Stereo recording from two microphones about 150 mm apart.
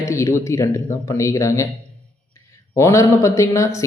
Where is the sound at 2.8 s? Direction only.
20° left (ahead or behind).